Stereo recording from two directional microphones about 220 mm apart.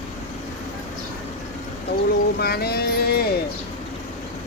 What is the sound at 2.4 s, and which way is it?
Music, 45° left (ahead or behind).